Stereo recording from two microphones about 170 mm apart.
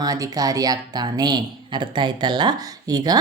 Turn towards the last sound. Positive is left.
turn(degrees=-25)  # may be behind; listen again after turning